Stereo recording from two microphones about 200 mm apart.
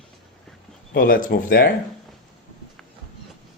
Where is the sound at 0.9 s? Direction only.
45° left (ahead or behind).